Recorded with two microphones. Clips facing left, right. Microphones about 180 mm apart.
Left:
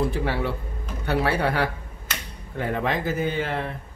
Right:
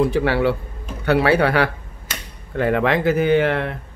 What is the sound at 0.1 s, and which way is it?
Speech, 80° right.